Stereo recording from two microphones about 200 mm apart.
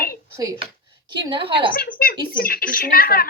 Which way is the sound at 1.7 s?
45° left (ahead or behind).